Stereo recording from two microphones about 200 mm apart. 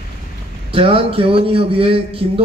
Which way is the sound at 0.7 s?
25° right (ahead or behind).